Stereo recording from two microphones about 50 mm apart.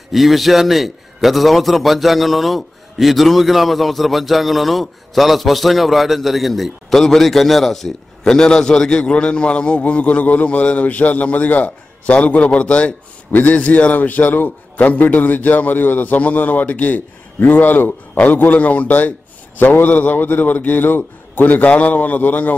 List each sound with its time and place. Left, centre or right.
0.1 s a man's voice: centre; by 22.5 s left